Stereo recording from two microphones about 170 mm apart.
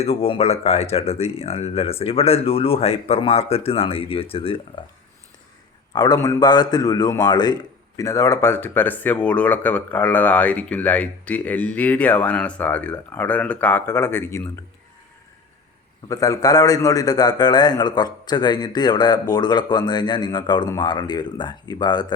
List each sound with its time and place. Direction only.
0.0 s speech: 35° left (ahead or behind)
5.9 s a man's voice: 25° left (ahead or behind)
16.0 s a man's voice: 20° left (ahead or behind)